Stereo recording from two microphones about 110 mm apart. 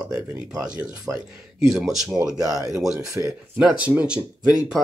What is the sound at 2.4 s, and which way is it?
Speech, 30° right (ahead or behind).